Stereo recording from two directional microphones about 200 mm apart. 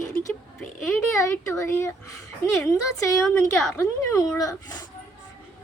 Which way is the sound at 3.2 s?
15° left (ahead or behind).